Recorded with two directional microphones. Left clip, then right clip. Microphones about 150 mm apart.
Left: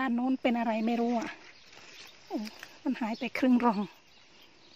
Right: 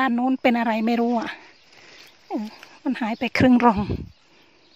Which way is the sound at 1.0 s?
60° right (ahead or behind).